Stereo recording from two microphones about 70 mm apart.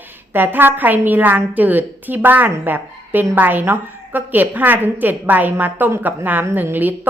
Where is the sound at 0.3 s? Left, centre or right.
Right.